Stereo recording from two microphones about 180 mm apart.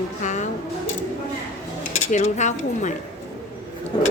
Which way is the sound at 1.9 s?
40° left (ahead or behind).